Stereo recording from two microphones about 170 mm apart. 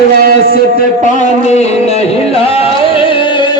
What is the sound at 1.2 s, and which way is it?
Music, 40° left (ahead or behind).